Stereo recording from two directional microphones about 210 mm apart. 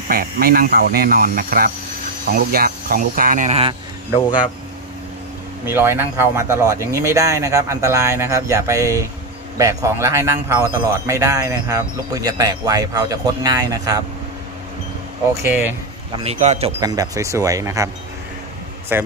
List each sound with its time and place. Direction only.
0.1 s speech: 45° right (ahead or behind); by 3.7 s 30° right (ahead or behind)
5.7 s speech: 10° right (ahead or behind)
15.4 s speech: 10° right (ahead or behind)
16.3 s speech: 30° right (ahead or behind)
16.8 s speech: 15° right (ahead or behind)
18.9 s speech: 10° right (ahead or behind)